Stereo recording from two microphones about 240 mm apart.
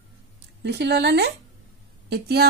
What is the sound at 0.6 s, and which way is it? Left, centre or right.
A woman's voice, right.